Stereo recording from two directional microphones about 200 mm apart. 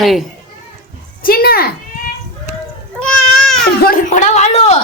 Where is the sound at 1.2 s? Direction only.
50° left (ahead or behind).